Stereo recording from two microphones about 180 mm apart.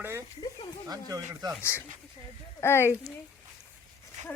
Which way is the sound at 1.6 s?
15° left (ahead or behind).